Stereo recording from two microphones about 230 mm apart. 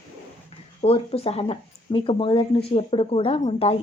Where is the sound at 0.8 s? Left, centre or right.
Left.